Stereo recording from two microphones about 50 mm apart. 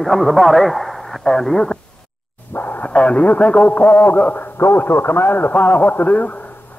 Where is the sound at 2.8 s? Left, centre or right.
Left.